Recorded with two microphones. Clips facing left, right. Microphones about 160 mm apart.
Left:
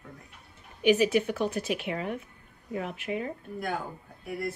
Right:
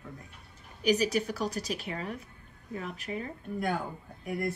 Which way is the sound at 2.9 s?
40° right (ahead or behind).